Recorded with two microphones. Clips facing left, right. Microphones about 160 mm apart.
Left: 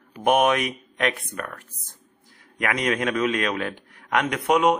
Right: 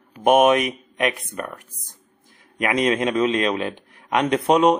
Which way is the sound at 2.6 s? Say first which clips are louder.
Right 4 dB; 25° right (ahead or behind).